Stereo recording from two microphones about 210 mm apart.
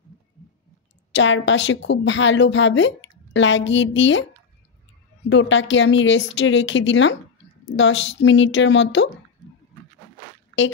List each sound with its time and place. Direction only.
1.1 s a woman's voice: 60° left (ahead or behind)
5.3 s a woman's voice: 60° left (ahead or behind)